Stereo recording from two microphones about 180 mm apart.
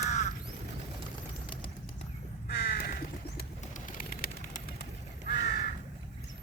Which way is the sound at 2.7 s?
55° left (ahead or behind).